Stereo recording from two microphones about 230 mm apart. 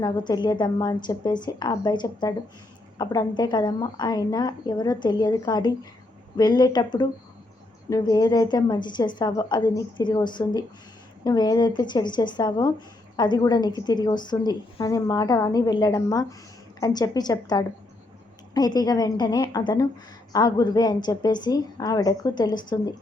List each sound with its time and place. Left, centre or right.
0.0 s a woman's voice: centre